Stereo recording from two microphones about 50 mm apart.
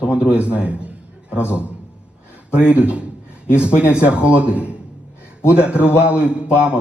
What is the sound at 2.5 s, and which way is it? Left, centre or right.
A man's voice, right.